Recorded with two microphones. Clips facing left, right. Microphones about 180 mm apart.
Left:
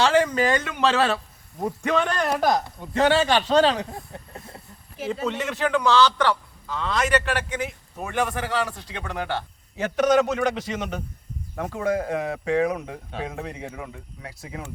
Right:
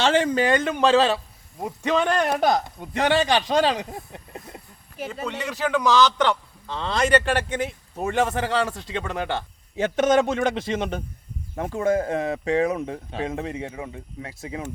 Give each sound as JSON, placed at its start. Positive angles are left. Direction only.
{"t": 0.0, "sound": "a man's voice", "side_deg": -25}
{"t": 5.2, "sound": "speech", "side_deg": -5}